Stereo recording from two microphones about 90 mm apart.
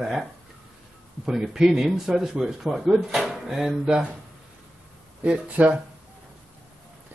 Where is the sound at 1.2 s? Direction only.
5° right (ahead or behind).